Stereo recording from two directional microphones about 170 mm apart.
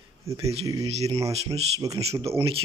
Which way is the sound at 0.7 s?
20° right (ahead or behind).